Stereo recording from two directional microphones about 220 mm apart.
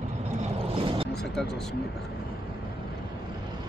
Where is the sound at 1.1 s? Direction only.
Centre (ahead or behind).